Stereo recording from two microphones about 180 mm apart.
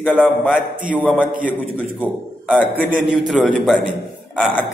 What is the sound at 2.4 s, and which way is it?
A man's voice, 5° right (ahead or behind).